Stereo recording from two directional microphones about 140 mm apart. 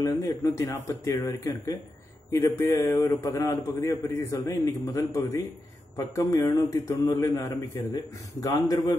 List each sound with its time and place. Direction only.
0.0 s a man's voice: 25° left (ahead or behind)